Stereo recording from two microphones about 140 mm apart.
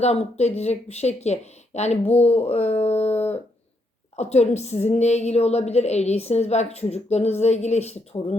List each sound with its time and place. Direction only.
0.0 s a woman's voice: 50° left (ahead or behind)